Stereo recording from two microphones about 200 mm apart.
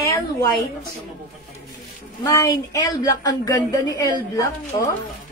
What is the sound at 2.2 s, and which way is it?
A woman's voice, 15° left (ahead or behind).